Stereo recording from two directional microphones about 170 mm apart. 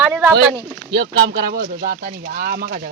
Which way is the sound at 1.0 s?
70° right (ahead or behind).